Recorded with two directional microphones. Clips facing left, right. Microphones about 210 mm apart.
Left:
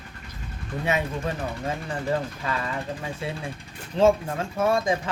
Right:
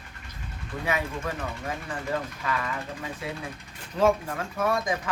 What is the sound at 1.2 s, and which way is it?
Speech, 30° left (ahead or behind).